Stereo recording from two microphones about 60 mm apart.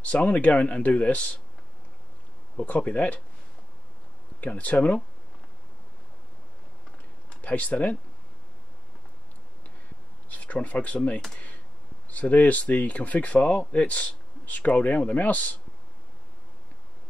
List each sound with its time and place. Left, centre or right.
0.0 s speech: left
2.5 s speech: left
4.4 s speech: left
7.2 s speech: left
10.3 s speech: left